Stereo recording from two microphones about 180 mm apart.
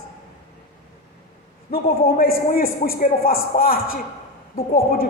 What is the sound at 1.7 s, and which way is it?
A man's voice, 55° left (ahead or behind).